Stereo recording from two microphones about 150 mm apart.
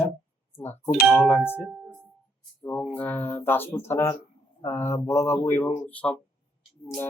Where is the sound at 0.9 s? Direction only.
5° right (ahead or behind).